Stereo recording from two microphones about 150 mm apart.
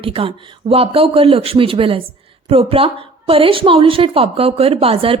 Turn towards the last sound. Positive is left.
turn(degrees=-40)  # may be behind; listen again after turning